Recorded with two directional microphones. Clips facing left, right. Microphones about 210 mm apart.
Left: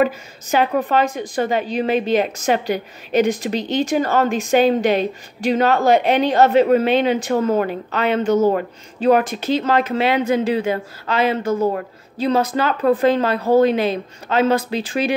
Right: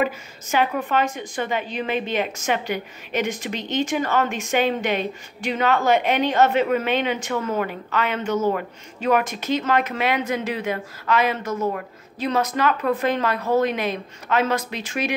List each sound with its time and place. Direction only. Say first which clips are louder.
0.0 s a woman's voice: left 5 dB; 35° left (ahead or behind)